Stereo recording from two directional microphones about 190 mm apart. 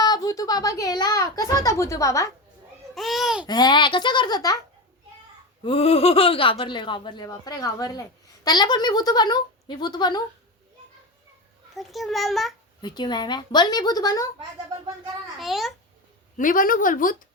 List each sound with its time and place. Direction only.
0.0 s speech: 20° left (ahead or behind)
2.9 s babbling: centre (ahead or behind)
3.4 s speech: 20° left (ahead or behind)
5.6 s speech: 30° left (ahead or behind)
11.7 s a child's voice: centre (ahead or behind)
12.8 s speech: 25° left (ahead or behind)
15.4 s a child's voice: centre (ahead or behind)
16.4 s speech: 45° left (ahead or behind)